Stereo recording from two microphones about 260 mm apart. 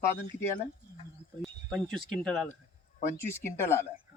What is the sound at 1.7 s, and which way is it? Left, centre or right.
Speech, centre.